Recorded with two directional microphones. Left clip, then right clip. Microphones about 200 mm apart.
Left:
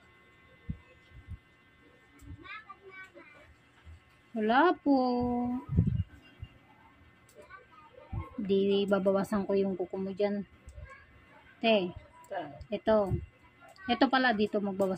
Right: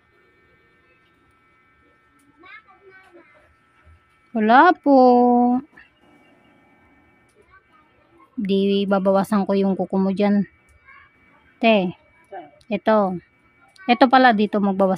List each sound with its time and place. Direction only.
4.4 s speech: 65° right (ahead or behind)
8.4 s speech: 65° right (ahead or behind)
11.6 s speech: 65° right (ahead or behind)